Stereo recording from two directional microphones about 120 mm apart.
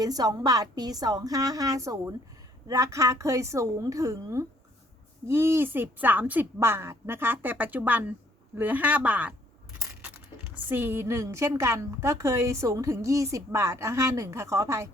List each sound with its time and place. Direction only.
0.0 s a woman's voice: 35° right (ahead or behind); by 9.3 s 15° right (ahead or behind)
10.5 s a woman's voice: 15° right (ahead or behind)